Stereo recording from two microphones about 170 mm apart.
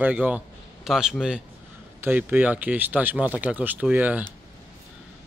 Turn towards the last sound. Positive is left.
turn(degrees=-10)  # may be behind; listen again after turning